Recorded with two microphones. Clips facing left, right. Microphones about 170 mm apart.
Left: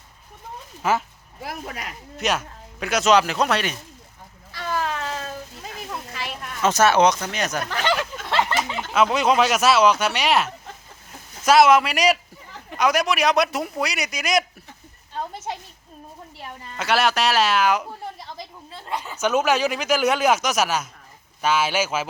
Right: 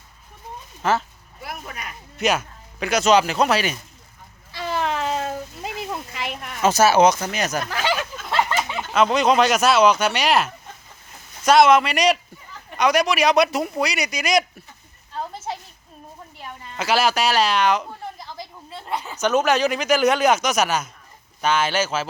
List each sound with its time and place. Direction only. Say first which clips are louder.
0.8 s speech: right 1 dB; 10° left (ahead or behind)
1.5 s speech: left 2 dB; 90° left
2.1 s speech: right 3 dB; centre (ahead or behind)
4.5 s a sound: right 2 dB; 25° right (ahead or behind)
8.7 s speech: right 2 dB; centre (ahead or behind)
16.7 s speech: right 1 dB; centre (ahead or behind)
19.1 s speech: right 1 dB; 5° left (ahead or behind)